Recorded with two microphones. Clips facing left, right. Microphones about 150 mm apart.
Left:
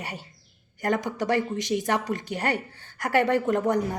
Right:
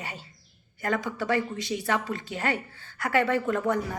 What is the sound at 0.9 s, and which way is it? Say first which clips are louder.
Speech: left 1 dB; 20° left (ahead or behind).